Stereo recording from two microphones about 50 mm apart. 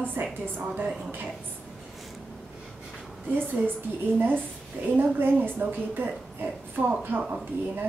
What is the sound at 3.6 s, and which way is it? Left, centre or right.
Speech, right.